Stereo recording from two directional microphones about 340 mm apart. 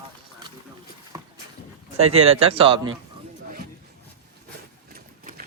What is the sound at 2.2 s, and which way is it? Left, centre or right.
Speech, centre.